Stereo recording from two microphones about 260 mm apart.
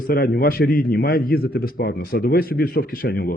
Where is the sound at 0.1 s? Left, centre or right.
Left.